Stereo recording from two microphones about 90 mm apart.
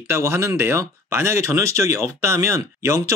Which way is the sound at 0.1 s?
30° right (ahead or behind).